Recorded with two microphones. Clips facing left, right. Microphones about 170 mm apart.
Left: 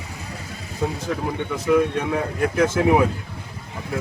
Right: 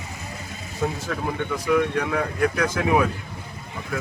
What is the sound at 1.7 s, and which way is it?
Speech, 25° left (ahead or behind).